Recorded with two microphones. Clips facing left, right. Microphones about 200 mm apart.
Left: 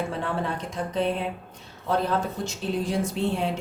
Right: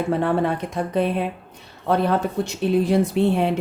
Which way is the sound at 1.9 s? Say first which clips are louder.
Right 5 dB; 65° right (ahead or behind).